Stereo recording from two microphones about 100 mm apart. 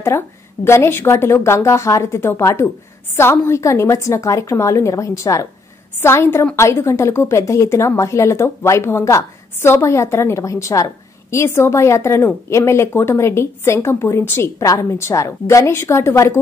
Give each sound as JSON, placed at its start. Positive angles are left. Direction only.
{"t": 0.1, "sound": "a woman's voice", "side_deg": 25}